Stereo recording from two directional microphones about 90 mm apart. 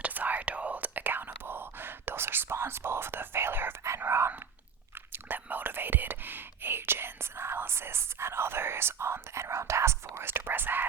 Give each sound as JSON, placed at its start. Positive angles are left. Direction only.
{"t": 0.0, "sound": "whispering", "side_deg": -20}